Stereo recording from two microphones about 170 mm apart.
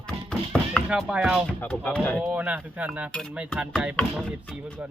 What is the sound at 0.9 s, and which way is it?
Speech, 5° right (ahead or behind).